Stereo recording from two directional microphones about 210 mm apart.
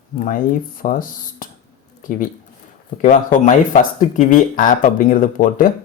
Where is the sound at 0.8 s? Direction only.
40° left (ahead or behind).